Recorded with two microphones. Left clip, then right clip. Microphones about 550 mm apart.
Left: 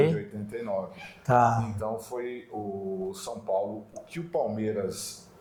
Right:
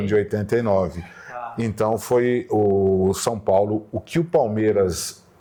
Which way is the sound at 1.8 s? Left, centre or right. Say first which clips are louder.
Right 14 dB; right.